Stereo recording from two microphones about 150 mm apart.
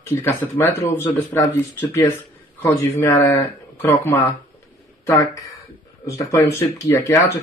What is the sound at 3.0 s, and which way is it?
Speech, 15° left (ahead or behind).